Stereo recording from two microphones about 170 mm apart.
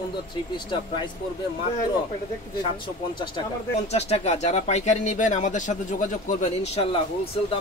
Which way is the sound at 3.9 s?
40° left (ahead or behind).